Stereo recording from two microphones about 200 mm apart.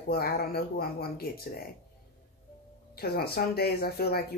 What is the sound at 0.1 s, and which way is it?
Speech, 50° left (ahead or behind).